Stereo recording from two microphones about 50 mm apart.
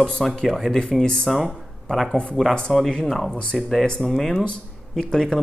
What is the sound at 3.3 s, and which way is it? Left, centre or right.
Speech, centre.